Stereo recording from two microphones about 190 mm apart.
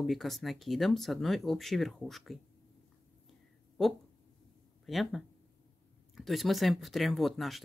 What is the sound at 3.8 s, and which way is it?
Speech, centre (ahead or behind).